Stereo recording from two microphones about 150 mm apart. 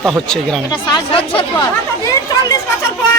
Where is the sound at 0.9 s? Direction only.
35° left (ahead or behind).